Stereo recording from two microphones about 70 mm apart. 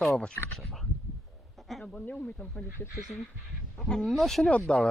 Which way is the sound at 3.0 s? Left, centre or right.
Centre.